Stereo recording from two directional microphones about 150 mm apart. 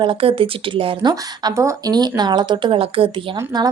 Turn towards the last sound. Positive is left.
turn(degrees=-35)  # may be behind; listen again after turning